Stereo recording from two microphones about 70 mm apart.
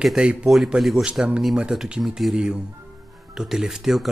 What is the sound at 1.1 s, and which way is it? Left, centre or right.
Speech, centre.